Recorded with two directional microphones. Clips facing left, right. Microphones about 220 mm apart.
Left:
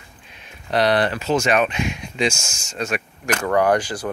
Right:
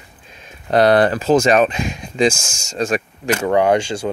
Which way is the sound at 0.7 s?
50° right (ahead or behind).